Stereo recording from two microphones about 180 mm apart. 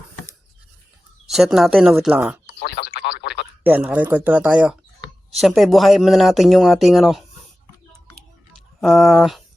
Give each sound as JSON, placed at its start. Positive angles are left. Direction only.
{"t": 1.3, "sound": "speech", "side_deg": 0}
{"t": 2.6, "sound": "a sound", "side_deg": 70}
{"t": 3.6, "sound": "speech", "side_deg": -10}
{"t": 8.8, "sound": "speech", "side_deg": 0}